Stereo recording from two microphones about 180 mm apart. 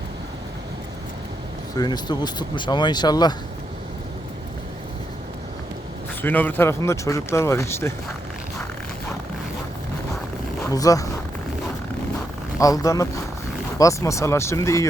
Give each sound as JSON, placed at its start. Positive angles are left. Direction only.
{"t": 1.7, "sound": "speech", "side_deg": 25}
{"t": 6.2, "sound": "speech", "side_deg": 10}
{"t": 10.6, "sound": "speech", "side_deg": 20}
{"t": 12.5, "sound": "speech", "side_deg": 20}